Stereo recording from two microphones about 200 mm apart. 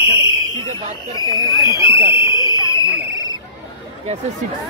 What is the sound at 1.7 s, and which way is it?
Speech, 15° right (ahead or behind).